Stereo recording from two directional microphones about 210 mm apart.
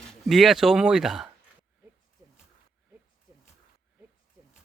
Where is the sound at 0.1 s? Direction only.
Centre (ahead or behind).